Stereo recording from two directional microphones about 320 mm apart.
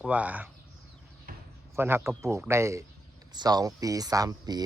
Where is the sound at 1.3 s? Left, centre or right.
Right.